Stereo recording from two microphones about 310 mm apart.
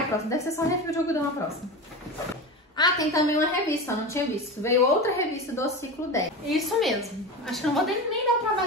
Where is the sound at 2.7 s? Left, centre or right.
Centre.